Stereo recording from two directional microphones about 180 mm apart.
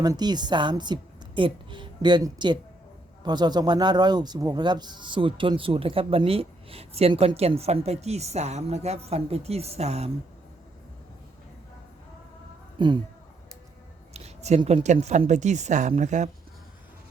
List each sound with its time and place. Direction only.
0.0 s a woman's voice: 20° right (ahead or behind)
12.8 s a woman's voice: 25° right (ahead or behind)
14.1 s speech: 35° right (ahead or behind)